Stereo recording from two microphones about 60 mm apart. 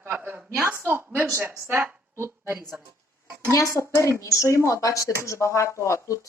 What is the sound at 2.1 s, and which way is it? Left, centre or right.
Speech, right.